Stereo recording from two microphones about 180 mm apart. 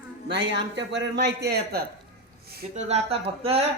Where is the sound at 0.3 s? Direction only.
80° right.